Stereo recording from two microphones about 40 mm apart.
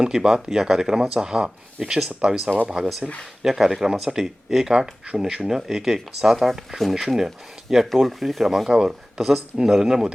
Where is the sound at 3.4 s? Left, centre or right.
Centre.